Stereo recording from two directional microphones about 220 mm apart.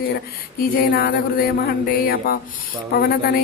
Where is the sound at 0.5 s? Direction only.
40° left (ahead or behind).